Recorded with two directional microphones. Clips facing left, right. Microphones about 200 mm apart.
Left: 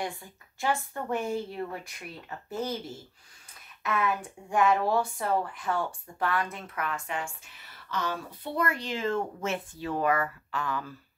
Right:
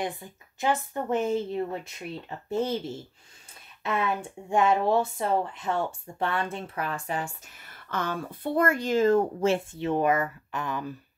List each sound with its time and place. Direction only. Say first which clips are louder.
0.0 s speech: right 3 dB; 20° right (ahead or behind)